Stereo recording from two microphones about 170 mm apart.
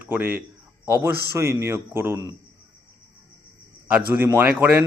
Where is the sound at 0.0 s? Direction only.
10° right (ahead or behind).